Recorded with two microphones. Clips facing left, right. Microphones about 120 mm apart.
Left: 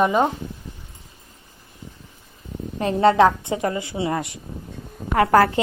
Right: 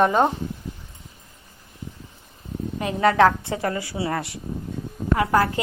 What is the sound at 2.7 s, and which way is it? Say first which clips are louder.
A woman's voice: left 3 dB; 30° left (ahead or behind).